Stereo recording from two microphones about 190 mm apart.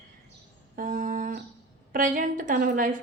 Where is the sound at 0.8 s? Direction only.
45° right (ahead or behind).